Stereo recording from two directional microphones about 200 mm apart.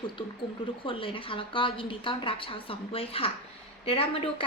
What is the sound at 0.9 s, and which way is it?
A woman's voice, 25° left (ahead or behind).